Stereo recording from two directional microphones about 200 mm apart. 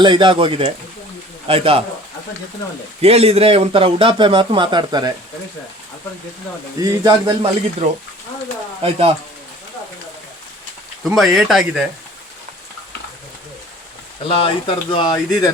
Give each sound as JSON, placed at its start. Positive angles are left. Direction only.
{"t": 0.0, "sound": "speech", "side_deg": -25}
{"t": 3.0, "sound": "speech", "side_deg": -30}
{"t": 6.7, "sound": "speech", "side_deg": -15}
{"t": 8.8, "sound": "speech", "side_deg": -30}
{"t": 11.1, "sound": "speech", "side_deg": 0}
{"t": 14.3, "sound": "speech", "side_deg": 25}